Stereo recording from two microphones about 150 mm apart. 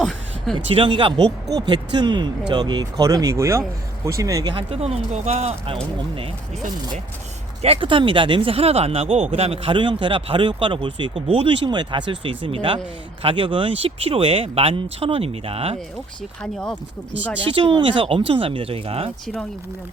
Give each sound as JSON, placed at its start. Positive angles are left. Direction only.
{"t": 0.0, "sound": "a sound", "side_deg": 0}
{"t": 0.5, "sound": "speech", "side_deg": -35}
{"t": 4.5, "sound": "speech", "side_deg": -40}
{"t": 7.6, "sound": "speech", "side_deg": -40}
{"t": 16.4, "sound": "speech", "side_deg": 5}
{"t": 17.5, "sound": "speech", "side_deg": -35}